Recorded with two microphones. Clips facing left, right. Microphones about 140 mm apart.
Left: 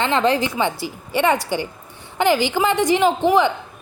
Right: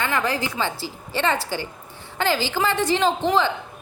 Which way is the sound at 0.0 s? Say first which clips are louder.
Left 6 dB; 25° left (ahead or behind).